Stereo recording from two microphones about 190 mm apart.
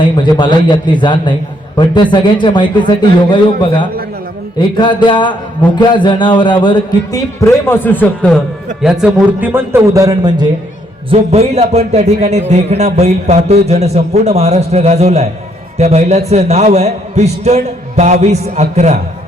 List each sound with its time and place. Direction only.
0.0 s a man's voice: 25° left (ahead or behind); by 8.4 s 5° left (ahead or behind)
8.8 s a man's voice: 5° right (ahead or behind); by 10.5 s 20° right (ahead or behind)
11.1 s a man's voice: 35° right (ahead or behind)